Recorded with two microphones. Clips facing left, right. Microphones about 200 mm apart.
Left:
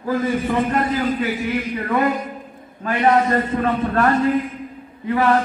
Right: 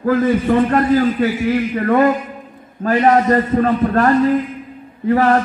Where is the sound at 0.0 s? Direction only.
50° right (ahead or behind).